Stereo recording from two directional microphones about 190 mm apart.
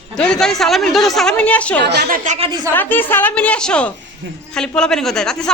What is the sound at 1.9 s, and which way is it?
Speech, 50° right (ahead or behind).